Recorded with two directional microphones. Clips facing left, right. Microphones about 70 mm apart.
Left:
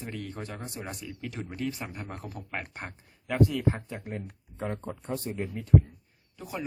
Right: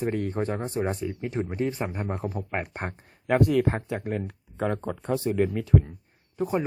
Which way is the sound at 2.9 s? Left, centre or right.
Right.